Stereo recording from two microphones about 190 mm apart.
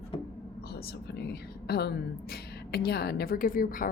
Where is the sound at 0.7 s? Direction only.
60° left (ahead or behind).